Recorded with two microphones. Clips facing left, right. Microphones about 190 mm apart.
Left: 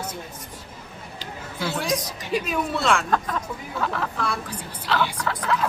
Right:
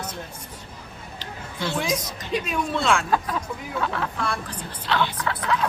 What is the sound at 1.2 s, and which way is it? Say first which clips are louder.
Chatter: even; 5° left (ahead or behind).